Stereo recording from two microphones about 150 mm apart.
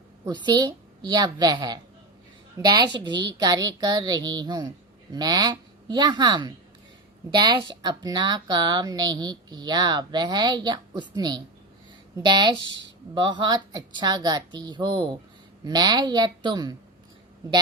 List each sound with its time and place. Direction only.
0.3 s a woman's voice: 30° right (ahead or behind)